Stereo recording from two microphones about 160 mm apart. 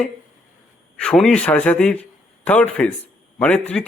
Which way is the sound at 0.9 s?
5° left (ahead or behind).